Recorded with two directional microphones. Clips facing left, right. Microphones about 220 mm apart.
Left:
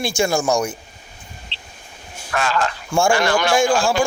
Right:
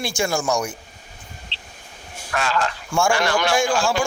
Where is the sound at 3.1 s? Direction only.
50° left (ahead or behind).